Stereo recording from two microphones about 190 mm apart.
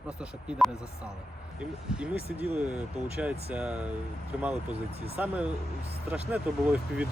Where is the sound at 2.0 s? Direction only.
10° right (ahead or behind).